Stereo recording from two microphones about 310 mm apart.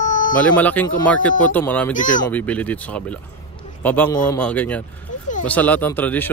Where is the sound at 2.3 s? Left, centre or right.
Centre.